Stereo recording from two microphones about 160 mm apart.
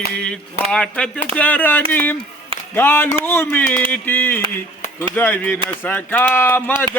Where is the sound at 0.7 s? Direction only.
5° left (ahead or behind).